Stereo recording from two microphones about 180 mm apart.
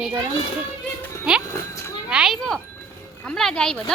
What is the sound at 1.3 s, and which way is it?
A woman's voice, 5° right (ahead or behind).